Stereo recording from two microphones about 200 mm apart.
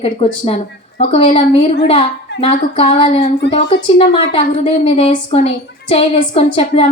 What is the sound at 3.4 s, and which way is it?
Speech, 60° left (ahead or behind).